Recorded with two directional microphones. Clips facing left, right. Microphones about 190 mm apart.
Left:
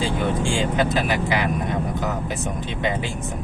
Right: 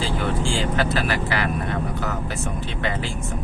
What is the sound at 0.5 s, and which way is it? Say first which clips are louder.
Speech: left 2 dB; 15° left (ahead or behind).